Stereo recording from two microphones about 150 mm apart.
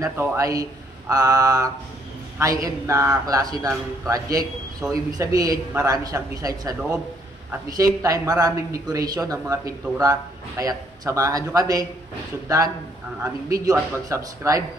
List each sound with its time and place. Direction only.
0.0 s speech: 15° right (ahead or behind)
7.7 s speech: 25° right (ahead or behind)